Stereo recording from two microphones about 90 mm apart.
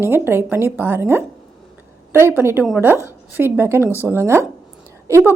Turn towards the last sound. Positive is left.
turn(degrees=-30)  # may be behind; listen again after turning